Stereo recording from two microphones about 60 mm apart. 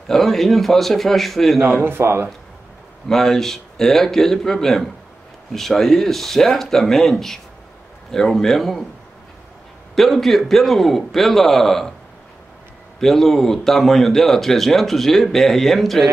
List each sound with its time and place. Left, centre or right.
0.1 s speech: centre
1.7 s speech: right
3.1 s speech: centre
9.9 s speech: centre
13.0 s speech: centre